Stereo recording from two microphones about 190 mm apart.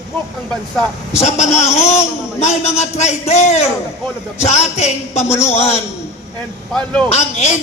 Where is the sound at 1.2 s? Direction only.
35° left (ahead or behind).